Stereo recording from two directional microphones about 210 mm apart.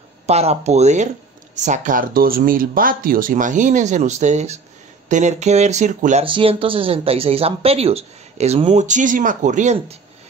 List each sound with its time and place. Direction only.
0.3 s speech: 30° right (ahead or behind)
6.2 s speech: 25° right (ahead or behind)